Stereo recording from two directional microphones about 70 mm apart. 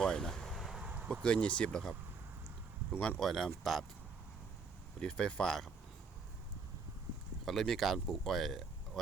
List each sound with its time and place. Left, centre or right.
0.0 s a sound: centre
0.9 s a sound: right
1.2 s speech: centre
3.2 s speech: centre
4.9 s speech: centre
7.4 s speech: centre